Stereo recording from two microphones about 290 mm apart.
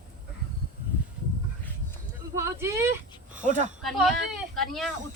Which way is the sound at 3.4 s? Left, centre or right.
Right.